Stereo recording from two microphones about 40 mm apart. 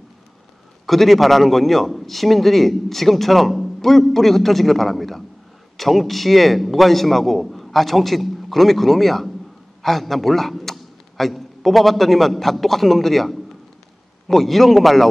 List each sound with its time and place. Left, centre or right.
0.8 s a man's voice: centre